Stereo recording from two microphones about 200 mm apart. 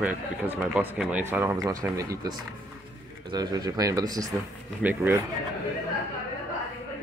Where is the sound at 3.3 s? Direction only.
20° right (ahead or behind).